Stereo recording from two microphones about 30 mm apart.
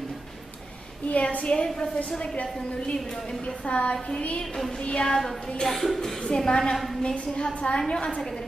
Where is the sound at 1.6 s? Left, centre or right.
Centre.